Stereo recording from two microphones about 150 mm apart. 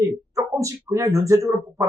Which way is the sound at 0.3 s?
20° right (ahead or behind).